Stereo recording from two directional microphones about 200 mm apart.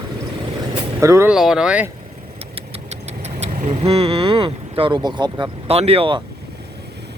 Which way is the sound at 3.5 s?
40° right (ahead or behind).